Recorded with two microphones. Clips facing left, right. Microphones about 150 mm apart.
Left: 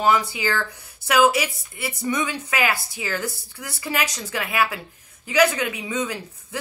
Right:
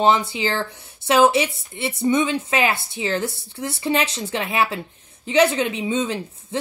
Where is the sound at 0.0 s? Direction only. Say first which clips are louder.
Right 2 dB; 25° right (ahead or behind).